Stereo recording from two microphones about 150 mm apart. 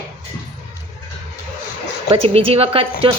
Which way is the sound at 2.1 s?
40° right (ahead or behind).